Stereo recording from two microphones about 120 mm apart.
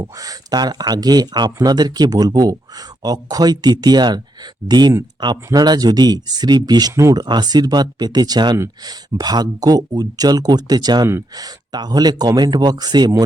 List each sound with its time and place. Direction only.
0.0 s speech: 30° right (ahead or behind)